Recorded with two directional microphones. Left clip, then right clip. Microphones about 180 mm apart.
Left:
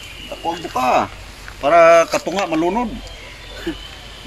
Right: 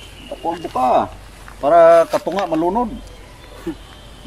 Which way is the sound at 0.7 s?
25° right (ahead or behind).